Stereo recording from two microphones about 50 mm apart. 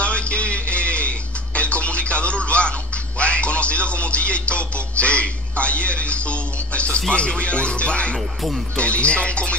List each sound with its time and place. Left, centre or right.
0.0 s music: left
7.0 s speech: centre